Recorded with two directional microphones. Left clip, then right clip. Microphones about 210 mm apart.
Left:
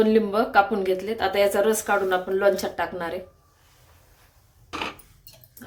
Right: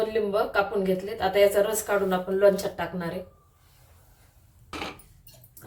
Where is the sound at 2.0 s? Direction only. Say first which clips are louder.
Right 2 dB; 50° left (ahead or behind).